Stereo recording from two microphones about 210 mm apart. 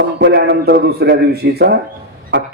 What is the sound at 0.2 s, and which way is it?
A man's voice, 55° right (ahead or behind).